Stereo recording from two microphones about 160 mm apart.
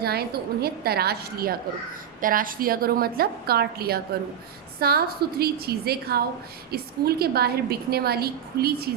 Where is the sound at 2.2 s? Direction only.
60° right (ahead or behind).